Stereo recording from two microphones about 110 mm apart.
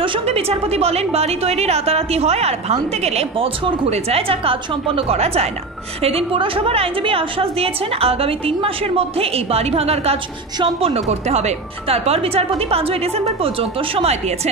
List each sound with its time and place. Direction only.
0.3 s a woman's voice: 70° right (ahead or behind)
3.6 s a woman's voice: 60° right (ahead or behind)
6.0 s a woman's voice: 60° right (ahead or behind)